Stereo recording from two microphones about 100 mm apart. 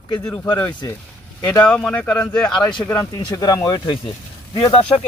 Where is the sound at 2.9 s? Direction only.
35° left (ahead or behind).